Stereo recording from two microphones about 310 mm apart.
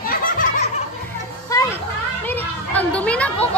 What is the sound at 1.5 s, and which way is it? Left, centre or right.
Children playing, centre.